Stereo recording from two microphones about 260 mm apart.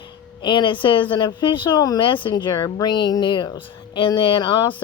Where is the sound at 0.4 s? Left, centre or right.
Centre.